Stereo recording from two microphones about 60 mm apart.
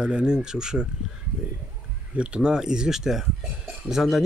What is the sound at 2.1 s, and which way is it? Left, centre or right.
Speech, centre.